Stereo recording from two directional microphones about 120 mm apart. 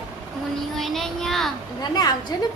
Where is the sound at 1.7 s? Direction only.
35° left (ahead or behind).